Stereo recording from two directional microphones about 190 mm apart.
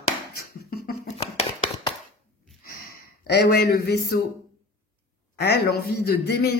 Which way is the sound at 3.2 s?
60° left (ahead or behind).